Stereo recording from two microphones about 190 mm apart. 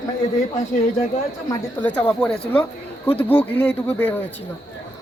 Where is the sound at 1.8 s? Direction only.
5° left (ahead or behind).